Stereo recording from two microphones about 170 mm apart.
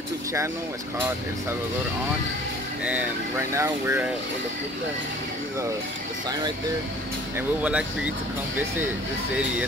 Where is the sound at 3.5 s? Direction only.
15° right (ahead or behind).